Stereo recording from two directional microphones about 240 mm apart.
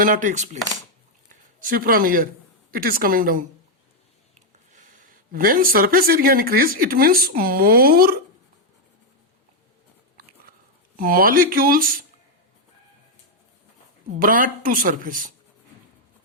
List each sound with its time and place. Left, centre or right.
0.0 s speech: right
1.6 s speech: right
10.9 s speech: right
14.2 s speech: right